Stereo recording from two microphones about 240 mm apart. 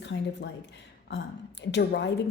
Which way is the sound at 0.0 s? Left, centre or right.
Left.